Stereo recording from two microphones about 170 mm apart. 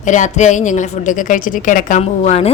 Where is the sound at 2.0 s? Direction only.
35° left (ahead or behind).